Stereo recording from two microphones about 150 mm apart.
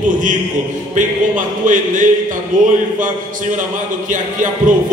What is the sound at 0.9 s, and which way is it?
Speech, 60° right (ahead or behind).